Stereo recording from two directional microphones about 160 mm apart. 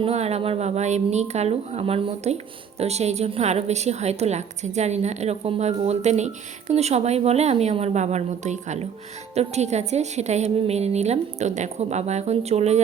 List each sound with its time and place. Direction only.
0.0 s a woman's voice: 40° right (ahead or behind)